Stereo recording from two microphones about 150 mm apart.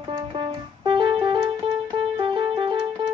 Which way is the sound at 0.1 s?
35° right (ahead or behind).